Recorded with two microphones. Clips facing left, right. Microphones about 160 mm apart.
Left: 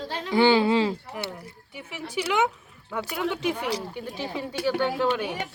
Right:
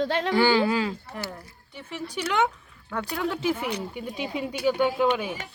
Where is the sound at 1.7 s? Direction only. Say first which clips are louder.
Left 1 dB; 10° left (ahead or behind).